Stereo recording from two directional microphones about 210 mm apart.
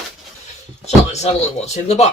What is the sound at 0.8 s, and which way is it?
Speech, 30° left (ahead or behind).